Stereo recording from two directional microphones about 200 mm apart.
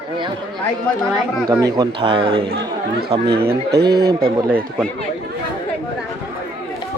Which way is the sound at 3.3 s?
50° right (ahead or behind).